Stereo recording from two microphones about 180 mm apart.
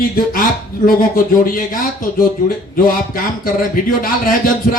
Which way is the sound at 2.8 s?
55° left (ahead or behind).